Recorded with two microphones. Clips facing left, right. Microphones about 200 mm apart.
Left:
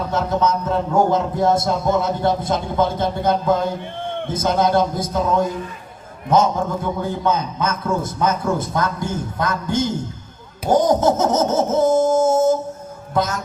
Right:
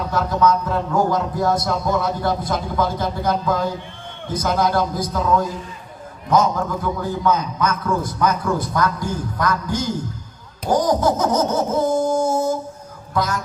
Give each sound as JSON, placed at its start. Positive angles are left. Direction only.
{"t": 0.1, "sound": "a man's voice", "side_deg": 25}
{"t": 10.7, "sound": "a sound", "side_deg": 25}
{"t": 13.1, "sound": "a man's voice", "side_deg": 25}